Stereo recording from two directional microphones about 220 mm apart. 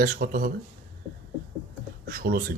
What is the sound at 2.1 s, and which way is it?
Speech, 40° right (ahead or behind).